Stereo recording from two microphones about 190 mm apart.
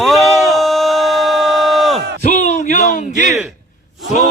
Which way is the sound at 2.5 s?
40° left (ahead or behind).